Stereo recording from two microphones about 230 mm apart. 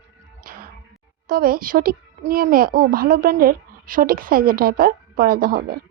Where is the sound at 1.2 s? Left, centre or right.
Right.